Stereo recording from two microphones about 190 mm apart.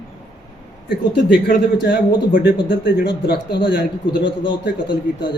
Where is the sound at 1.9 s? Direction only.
50° left (ahead or behind).